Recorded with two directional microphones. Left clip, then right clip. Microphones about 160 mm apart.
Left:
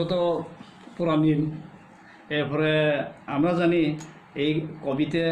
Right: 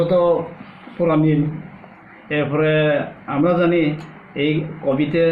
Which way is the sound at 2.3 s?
35° left (ahead or behind).